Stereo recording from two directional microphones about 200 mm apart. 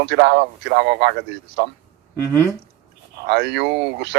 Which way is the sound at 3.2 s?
55° right (ahead or behind).